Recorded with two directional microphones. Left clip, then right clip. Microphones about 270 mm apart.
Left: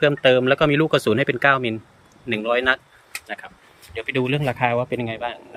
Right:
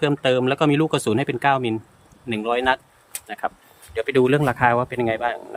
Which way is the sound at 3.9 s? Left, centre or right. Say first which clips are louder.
Right 5 dB; centre.